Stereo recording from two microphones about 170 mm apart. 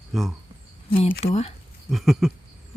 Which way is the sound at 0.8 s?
35° left (ahead or behind).